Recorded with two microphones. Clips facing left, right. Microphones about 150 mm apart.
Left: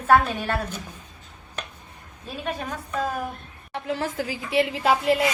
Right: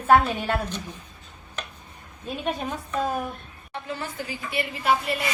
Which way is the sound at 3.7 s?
90° left.